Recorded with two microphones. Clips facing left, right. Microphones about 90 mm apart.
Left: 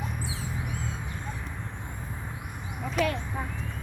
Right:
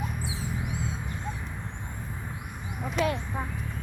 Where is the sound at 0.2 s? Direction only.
20° right (ahead or behind).